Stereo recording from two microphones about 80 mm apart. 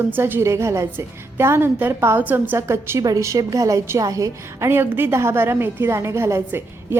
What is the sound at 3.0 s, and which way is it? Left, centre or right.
A woman's voice, right.